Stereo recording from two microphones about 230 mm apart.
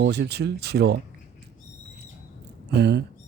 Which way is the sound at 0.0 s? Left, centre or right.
Right.